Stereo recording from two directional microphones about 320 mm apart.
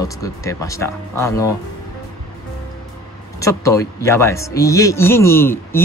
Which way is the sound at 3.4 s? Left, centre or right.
Centre.